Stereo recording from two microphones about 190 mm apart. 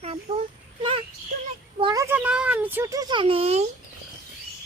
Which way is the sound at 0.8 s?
30° right (ahead or behind).